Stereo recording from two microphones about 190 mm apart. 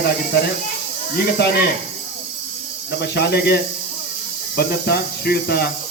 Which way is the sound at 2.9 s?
60° left (ahead or behind).